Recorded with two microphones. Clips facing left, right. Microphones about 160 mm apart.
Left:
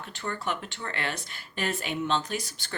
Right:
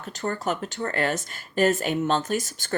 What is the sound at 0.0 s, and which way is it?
Speech, 40° right (ahead or behind).